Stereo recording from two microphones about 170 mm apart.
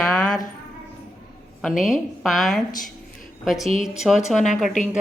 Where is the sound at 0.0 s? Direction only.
5° left (ahead or behind).